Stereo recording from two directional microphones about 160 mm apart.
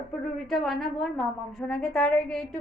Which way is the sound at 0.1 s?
5° left (ahead or behind).